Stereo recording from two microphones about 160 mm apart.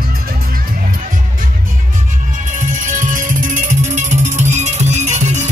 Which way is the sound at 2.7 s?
55° right (ahead or behind).